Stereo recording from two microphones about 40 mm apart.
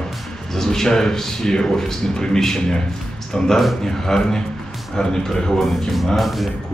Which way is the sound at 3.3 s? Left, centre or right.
Left.